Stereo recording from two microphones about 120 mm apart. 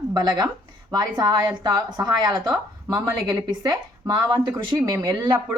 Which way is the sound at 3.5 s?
40° right (ahead or behind).